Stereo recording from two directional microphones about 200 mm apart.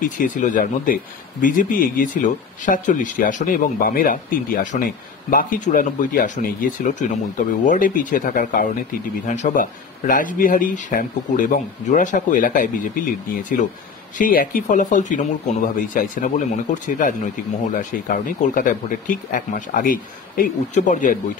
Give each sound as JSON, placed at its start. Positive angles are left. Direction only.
{"t": 0.0, "sound": "speech", "side_deg": 40}